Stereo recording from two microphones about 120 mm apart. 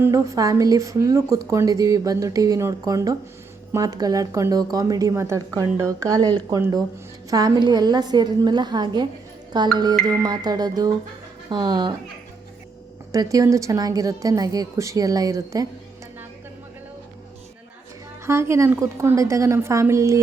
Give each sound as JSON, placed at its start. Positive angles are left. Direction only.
{"t": 0.0, "sound": "a woman's voice", "side_deg": -25}
{"t": 13.1, "sound": "a woman's voice", "side_deg": -30}
{"t": 18.3, "sound": "a woman's voice", "side_deg": -25}